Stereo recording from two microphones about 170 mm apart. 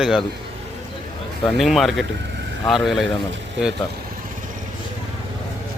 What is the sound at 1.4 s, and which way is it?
Speech, centre (ahead or behind).